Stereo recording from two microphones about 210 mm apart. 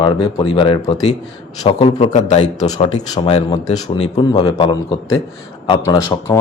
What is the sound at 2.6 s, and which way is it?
Speech, 20° left (ahead or behind).